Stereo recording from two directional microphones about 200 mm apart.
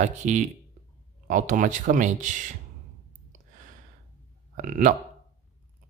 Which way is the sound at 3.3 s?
40° right (ahead or behind).